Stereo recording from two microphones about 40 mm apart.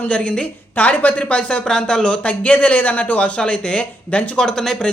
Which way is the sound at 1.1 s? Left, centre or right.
Left.